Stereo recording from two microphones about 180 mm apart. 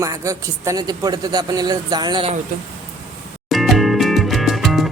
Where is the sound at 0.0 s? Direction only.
20° right (ahead or behind).